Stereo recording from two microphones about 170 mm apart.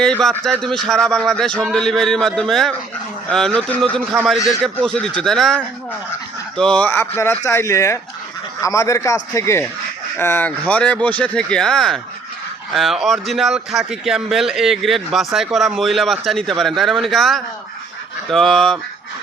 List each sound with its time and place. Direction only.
0.0 s a man's voice: 5° left (ahead or behind)
6.6 s a man's voice: 5° left (ahead or behind)